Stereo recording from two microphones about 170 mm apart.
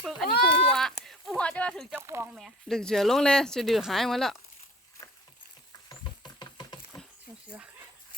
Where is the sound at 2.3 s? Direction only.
Centre (ahead or behind).